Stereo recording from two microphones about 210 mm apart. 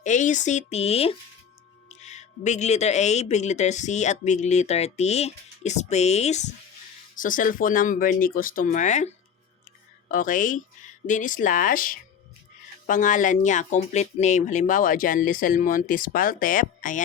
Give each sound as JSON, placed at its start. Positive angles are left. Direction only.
{"t": 0.0, "sound": "speech", "side_deg": 35}